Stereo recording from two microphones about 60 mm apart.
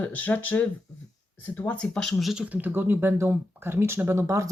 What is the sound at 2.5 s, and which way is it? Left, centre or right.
Speech, right.